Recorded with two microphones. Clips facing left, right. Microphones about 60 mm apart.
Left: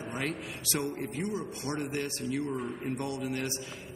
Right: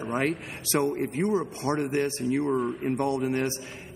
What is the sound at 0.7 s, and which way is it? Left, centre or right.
A man's voice, right.